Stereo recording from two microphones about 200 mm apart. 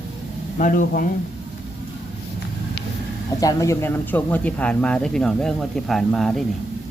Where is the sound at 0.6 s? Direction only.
40° left (ahead or behind).